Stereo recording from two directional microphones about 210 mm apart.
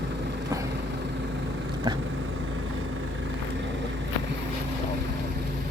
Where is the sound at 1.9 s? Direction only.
20° right (ahead or behind).